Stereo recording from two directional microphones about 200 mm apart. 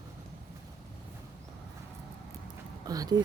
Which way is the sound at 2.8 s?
20° right (ahead or behind).